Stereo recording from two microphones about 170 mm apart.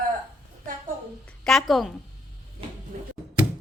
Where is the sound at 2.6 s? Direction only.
30° right (ahead or behind).